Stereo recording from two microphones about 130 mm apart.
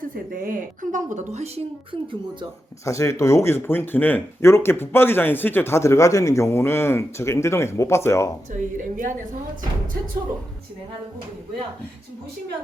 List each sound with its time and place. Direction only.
0.0 s a woman's voice: 90° right; by 1.6 s 60° right (ahead or behind)
2.8 s speech: 25° left (ahead or behind)
8.5 s a woman's voice: 90° right